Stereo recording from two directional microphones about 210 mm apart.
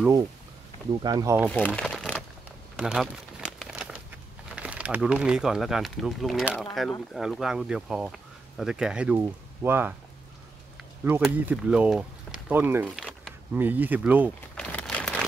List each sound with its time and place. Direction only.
0.9 s speech: 15° right (ahead or behind)
1.7 s crumpling: 5° left (ahead or behind)
4.6 s speech: 5° right (ahead or behind)
14.6 s a sound: 5° left (ahead or behind)